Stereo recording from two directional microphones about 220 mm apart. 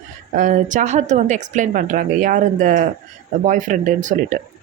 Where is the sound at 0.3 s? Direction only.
35° right (ahead or behind).